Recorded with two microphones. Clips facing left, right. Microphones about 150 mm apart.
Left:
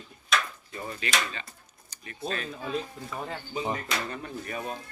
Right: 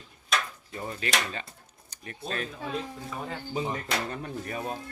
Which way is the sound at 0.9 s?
45° right (ahead or behind).